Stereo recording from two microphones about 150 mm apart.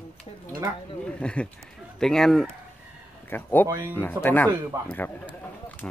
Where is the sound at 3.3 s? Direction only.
15° left (ahead or behind).